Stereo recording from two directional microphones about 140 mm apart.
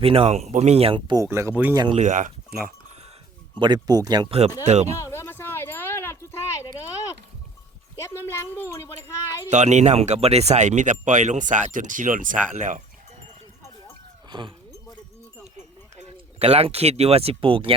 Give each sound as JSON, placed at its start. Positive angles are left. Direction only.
{"t": 0.0, "sound": "speech", "side_deg": -45}
{"t": 1.2, "sound": "speech", "side_deg": -20}
{"t": 1.9, "sound": "speech", "side_deg": -55}
{"t": 3.6, "sound": "speech", "side_deg": -30}
{"t": 4.3, "sound": "speech", "side_deg": -50}
{"t": 4.9, "sound": "a sound", "side_deg": 20}
{"t": 7.9, "sound": "a child's voice", "side_deg": 20}
{"t": 9.5, "sound": "speech", "side_deg": -55}
{"t": 14.3, "sound": "speech", "side_deg": -35}
{"t": 16.0, "sound": "speech", "side_deg": -45}